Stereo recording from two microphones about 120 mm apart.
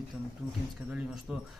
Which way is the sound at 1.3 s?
Centre (ahead or behind).